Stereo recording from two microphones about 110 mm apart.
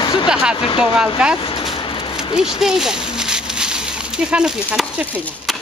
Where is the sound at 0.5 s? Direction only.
55° left (ahead or behind).